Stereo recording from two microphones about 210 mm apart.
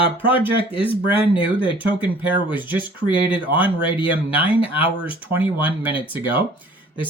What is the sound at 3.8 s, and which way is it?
Speech, 25° left (ahead or behind).